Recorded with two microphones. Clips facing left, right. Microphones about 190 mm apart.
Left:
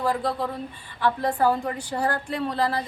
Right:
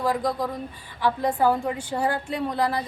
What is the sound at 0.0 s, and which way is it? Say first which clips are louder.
Speech: right 1 dB; 10° right (ahead or behind).